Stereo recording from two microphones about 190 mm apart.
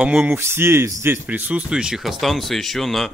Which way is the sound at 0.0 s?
5° right (ahead or behind).